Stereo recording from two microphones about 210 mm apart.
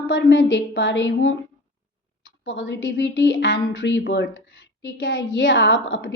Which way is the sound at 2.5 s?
60° left (ahead or behind).